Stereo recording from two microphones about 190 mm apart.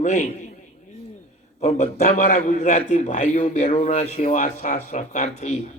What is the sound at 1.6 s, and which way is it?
A man's voice, 35° left (ahead or behind).